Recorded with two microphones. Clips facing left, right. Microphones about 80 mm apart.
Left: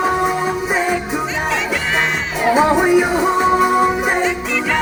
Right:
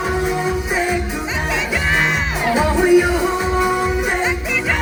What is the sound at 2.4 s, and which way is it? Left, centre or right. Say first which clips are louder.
Music: left 4 dB; left.